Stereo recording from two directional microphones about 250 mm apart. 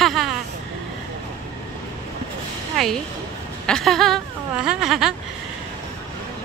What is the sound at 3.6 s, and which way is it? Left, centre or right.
Speech, centre.